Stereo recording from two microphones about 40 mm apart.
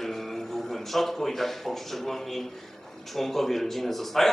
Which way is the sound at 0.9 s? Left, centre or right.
Centre.